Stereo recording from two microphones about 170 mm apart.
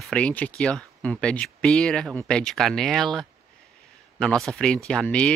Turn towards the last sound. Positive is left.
turn(degrees=5)  # may be behind; listen again after turning